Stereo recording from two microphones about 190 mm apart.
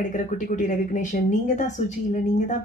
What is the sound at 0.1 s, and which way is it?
A woman's voice, 40° left (ahead or behind).